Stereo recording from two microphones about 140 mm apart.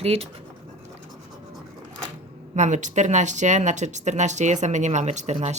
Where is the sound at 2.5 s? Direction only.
60° right (ahead or behind).